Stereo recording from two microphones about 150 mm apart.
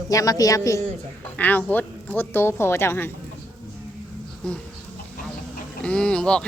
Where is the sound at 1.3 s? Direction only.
10° left (ahead or behind).